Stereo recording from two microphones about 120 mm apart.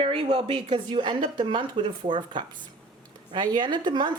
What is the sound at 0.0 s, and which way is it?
Speech, 50° right (ahead or behind).